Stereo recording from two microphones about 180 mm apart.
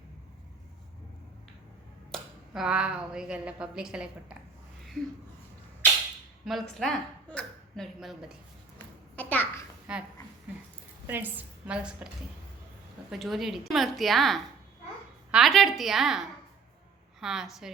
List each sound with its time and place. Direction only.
2.1 s a woman's voice: 5° right (ahead or behind)
6.4 s speech: centre (ahead or behind)
9.1 s a sound: 10° left (ahead or behind)
9.9 s a woman's voice: 5° right (ahead or behind)
13.1 s a woman's voice: centre (ahead or behind)